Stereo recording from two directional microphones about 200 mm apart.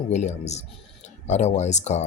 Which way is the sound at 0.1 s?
35° left (ahead or behind).